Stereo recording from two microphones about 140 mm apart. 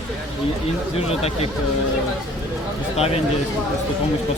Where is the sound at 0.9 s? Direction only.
45° left (ahead or behind).